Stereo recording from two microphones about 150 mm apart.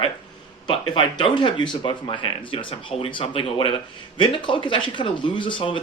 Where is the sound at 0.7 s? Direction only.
30° left (ahead or behind).